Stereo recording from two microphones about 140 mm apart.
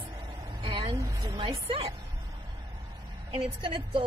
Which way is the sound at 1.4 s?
40° right (ahead or behind).